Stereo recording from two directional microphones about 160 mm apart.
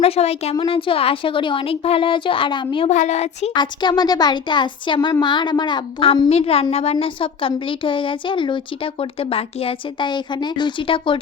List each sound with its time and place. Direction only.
0.0 s speech: 40° left (ahead or behind)
0.5 s speech: 30° left (ahead or behind)
2.9 s speech: 50° left (ahead or behind)
3.5 s speech: 30° left (ahead or behind)